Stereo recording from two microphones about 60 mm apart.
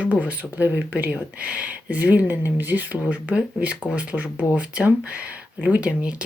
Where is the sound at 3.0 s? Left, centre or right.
Right.